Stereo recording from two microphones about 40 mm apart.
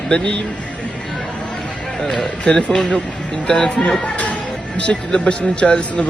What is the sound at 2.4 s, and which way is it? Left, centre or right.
Speech, left.